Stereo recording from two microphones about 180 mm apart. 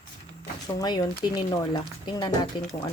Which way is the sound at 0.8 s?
25° left (ahead or behind).